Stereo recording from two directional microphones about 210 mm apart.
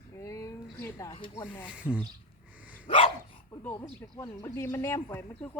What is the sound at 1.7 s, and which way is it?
Speech, 5° right (ahead or behind).